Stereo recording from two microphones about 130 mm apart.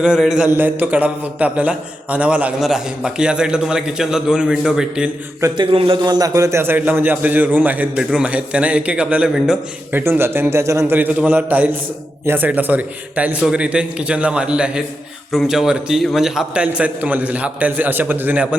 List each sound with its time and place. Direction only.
0.0 s a man's voice: 5° right (ahead or behind)
5.5 s a man's voice: 45° right (ahead or behind); by 9.6 s 5° right (ahead or behind)
9.9 s a man's voice: 15° right (ahead or behind)